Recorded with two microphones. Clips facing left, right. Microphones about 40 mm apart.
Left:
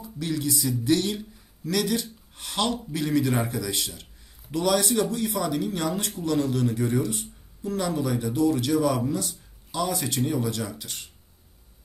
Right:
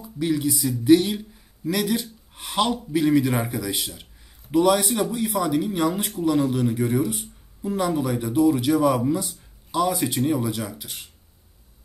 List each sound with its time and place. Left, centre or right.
0.0 s a man's voice: centre